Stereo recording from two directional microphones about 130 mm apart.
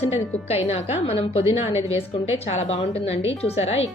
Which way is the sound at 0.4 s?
55° left (ahead or behind).